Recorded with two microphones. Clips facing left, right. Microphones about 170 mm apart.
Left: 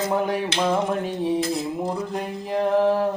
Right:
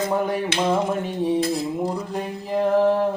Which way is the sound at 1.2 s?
Centre (ahead or behind).